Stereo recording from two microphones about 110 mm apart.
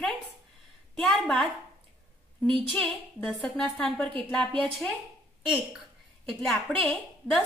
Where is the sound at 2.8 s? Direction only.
10° left (ahead or behind).